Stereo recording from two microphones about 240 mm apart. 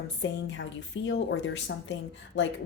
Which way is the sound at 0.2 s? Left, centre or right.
Left.